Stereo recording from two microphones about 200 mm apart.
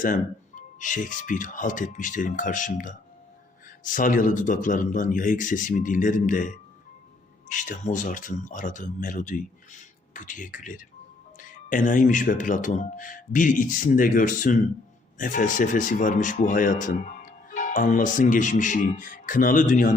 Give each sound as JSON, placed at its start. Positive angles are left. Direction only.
{"t": 0.0, "sound": "speech", "side_deg": 40}
{"t": 3.9, "sound": "speech", "side_deg": 40}